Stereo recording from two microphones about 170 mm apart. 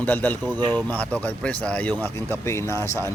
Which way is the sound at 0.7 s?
10° left (ahead or behind).